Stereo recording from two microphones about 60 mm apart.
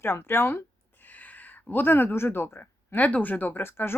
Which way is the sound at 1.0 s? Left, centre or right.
Left.